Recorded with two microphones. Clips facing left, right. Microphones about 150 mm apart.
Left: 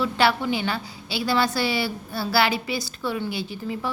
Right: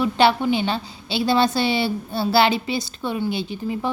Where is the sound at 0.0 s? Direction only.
20° right (ahead or behind).